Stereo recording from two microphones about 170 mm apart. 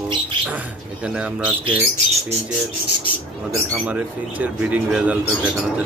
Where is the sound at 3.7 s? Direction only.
10° right (ahead or behind).